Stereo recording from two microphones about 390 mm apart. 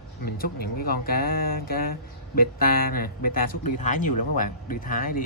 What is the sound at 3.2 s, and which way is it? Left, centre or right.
Speech, left.